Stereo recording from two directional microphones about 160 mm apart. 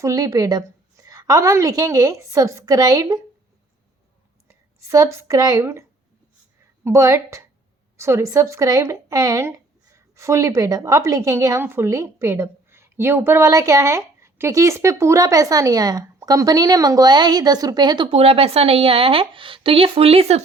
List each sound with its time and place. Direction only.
0.0 s a woman's voice: 20° right (ahead or behind)
4.4 s speech: 20° right (ahead or behind)
6.8 s a woman's voice: 20° right (ahead or behind); by 20.4 s 40° right (ahead or behind)